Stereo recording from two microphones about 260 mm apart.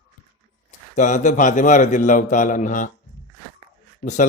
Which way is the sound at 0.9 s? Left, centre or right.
Left.